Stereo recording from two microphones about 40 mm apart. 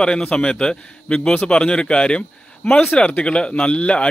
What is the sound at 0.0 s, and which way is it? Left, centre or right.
A man's voice, left.